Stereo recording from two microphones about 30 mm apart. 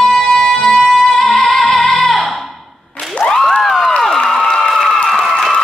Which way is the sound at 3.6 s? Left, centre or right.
Centre.